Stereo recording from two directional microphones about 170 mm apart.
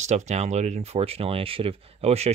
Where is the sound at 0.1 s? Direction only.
40° right (ahead or behind).